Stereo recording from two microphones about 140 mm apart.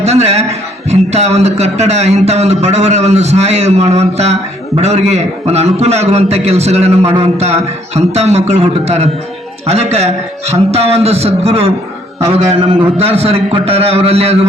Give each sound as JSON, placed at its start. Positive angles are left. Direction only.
{"t": 0.0, "sound": "a man's voice", "side_deg": -50}
{"t": 13.0, "sound": "a man's voice", "side_deg": -45}